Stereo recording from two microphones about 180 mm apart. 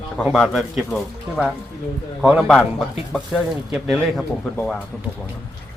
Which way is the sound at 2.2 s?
5° right (ahead or behind).